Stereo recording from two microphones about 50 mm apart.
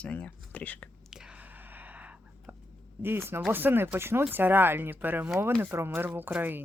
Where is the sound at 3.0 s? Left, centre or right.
Right.